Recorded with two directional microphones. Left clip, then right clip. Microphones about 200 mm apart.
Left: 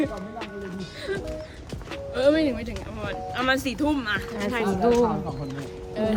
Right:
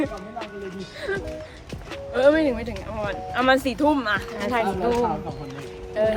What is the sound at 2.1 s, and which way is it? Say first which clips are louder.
Speech: right 3 dB; 25° right (ahead or behind).